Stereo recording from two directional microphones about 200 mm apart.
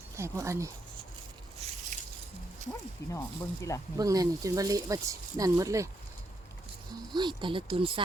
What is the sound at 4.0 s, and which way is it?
Speech, 15° right (ahead or behind).